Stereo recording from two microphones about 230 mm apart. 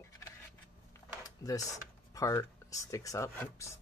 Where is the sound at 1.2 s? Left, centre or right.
Centre.